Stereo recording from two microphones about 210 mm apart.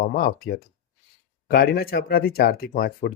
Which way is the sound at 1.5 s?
45° left (ahead or behind).